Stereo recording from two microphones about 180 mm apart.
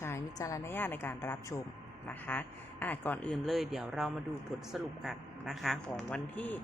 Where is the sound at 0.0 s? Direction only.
15° left (ahead or behind).